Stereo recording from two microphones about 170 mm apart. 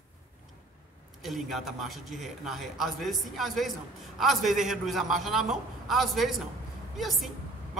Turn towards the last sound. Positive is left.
turn(degrees=0)  # may be behind; listen again after turning